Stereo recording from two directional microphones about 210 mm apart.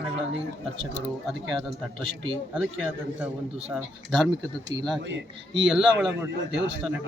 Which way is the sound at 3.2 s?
5° right (ahead or behind).